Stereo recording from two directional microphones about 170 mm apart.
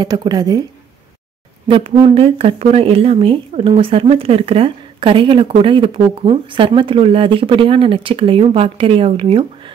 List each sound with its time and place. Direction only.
0.0 s speech: 25° right (ahead or behind)
1.7 s speech: 30° right (ahead or behind)